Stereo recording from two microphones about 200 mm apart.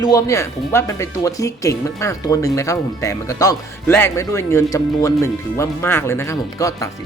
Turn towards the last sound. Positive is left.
turn(degrees=15)  # may be behind; listen again after turning